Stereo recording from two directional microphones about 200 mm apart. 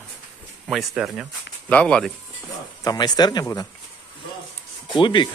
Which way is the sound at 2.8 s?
20° left (ahead or behind).